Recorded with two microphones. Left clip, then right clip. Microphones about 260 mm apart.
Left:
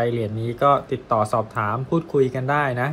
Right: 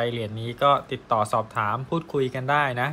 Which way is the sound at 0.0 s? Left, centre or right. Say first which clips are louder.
Left 4 dB; right.